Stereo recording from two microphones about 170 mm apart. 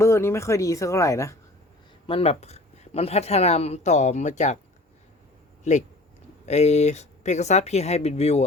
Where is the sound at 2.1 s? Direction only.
35° left (ahead or behind).